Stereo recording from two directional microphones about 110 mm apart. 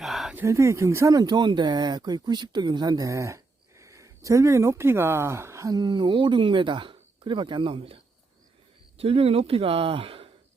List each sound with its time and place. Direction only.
0.0 s a sound: centre (ahead or behind)
0.4 s speech: 25° right (ahead or behind)
5.8 s speech: 45° right (ahead or behind)